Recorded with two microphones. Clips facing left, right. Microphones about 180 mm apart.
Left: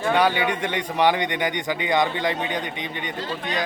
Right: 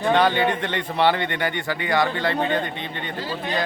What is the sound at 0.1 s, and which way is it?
A man's voice, 10° left (ahead or behind).